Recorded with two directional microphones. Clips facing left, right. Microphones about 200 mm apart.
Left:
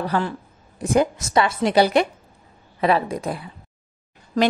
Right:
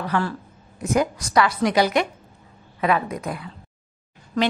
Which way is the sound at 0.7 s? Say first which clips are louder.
Left 2 dB; 30° left (ahead or behind).